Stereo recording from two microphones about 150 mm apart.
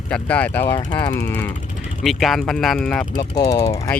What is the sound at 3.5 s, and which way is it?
Speech, 20° left (ahead or behind).